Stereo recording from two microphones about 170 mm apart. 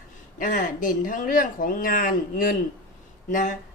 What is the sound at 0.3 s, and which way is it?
A woman's voice, 50° left (ahead or behind).